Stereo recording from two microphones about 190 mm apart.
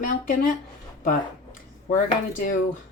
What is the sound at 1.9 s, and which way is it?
Speech, 40° left (ahead or behind).